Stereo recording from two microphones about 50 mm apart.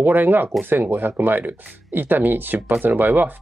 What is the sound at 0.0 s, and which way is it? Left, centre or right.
Speech, right.